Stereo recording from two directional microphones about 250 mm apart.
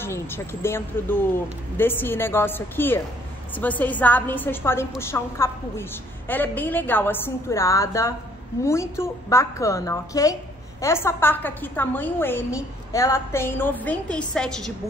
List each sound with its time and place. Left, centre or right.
0.0 s a woman's voice: centre